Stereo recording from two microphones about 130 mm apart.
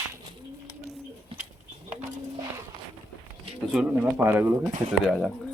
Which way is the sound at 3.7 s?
10° right (ahead or behind).